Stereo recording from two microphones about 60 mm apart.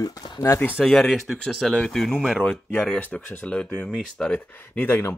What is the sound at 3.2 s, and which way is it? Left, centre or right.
Speech, left.